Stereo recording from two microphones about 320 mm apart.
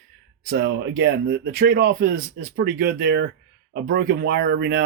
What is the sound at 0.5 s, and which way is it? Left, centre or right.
Speech, right.